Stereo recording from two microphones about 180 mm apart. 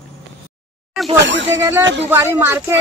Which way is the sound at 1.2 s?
85° right.